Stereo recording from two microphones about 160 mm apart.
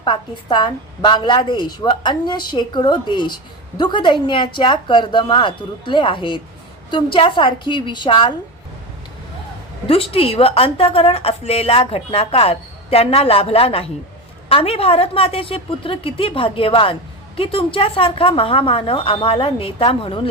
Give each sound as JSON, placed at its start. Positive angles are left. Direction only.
{"t": 0.0, "sound": "a woman's voice", "side_deg": 30}
{"t": 9.8, "sound": "a woman's voice", "side_deg": 35}